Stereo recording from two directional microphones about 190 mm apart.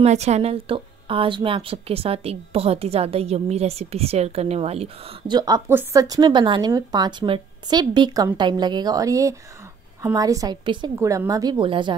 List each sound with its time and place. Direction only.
0.0 s speech: 35° right (ahead or behind)